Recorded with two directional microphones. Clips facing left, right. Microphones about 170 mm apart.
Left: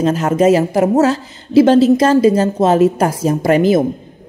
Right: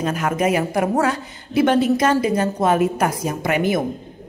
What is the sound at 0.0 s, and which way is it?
A woman's voice, 25° left (ahead or behind).